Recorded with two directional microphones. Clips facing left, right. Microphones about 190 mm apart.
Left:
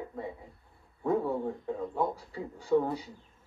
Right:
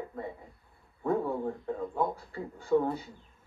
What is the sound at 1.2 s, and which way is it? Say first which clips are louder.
Speech: left 1 dB; centre (ahead or behind).